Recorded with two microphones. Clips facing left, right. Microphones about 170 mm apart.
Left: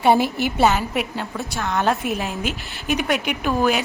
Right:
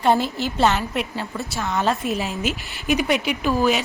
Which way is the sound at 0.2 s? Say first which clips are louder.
Left 3 dB; 65° left (ahead or behind).